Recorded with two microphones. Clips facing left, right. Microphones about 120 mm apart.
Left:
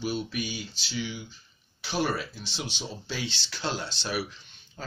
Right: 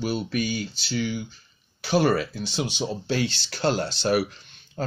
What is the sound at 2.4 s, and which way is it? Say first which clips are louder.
Speech: right 9 dB; 50° right (ahead or behind).